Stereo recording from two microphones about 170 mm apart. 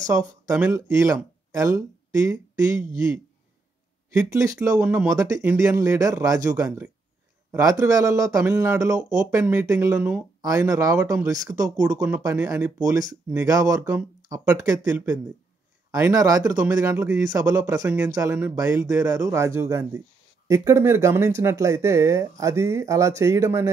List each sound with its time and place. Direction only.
0.0 s speech: 20° right (ahead or behind)
4.1 s speech: 20° right (ahead or behind)
15.9 s speech: 20° right (ahead or behind)